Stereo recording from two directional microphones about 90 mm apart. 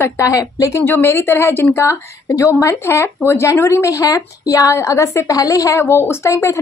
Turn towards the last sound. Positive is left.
turn(degrees=35)  # may be behind; listen again after turning